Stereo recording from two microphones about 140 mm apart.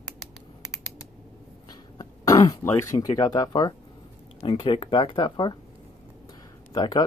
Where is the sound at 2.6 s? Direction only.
20° left (ahead or behind).